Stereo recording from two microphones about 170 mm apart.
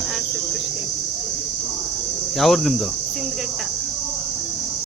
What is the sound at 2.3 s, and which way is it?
Cricket, centre (ahead or behind).